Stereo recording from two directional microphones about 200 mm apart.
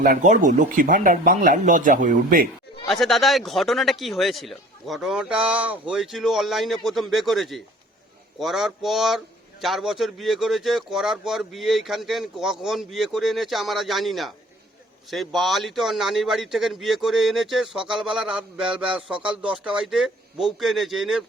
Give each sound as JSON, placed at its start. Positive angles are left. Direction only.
{"t": 0.0, "sound": "speech", "side_deg": -40}
{"t": 2.9, "sound": "a man's voice", "side_deg": 0}